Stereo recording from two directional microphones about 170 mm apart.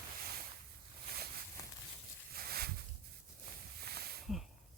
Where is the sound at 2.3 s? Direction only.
65° right (ahead or behind).